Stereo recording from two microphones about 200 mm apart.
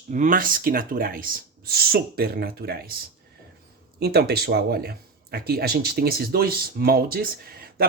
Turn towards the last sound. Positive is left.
turn(degrees=-50)  # may be behind; listen again after turning